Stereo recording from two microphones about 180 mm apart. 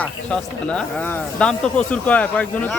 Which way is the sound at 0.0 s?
5° left (ahead or behind).